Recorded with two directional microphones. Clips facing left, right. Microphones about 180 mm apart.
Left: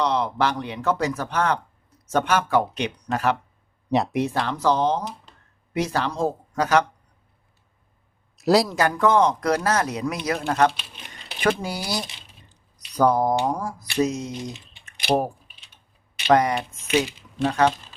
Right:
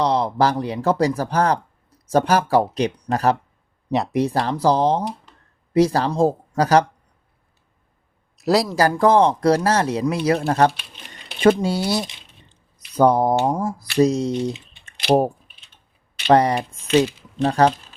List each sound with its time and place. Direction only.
0.0 s speech: 35° right (ahead or behind)
3.9 s speech: centre (ahead or behind)
4.3 s speech: 35° right (ahead or behind)
8.4 s speech: centre (ahead or behind)
8.7 s speech: 35° right (ahead or behind)
14.0 s speech: 35° right (ahead or behind)
14.8 s typing: 30° right (ahead or behind)
16.3 s speech: 30° right (ahead or behind)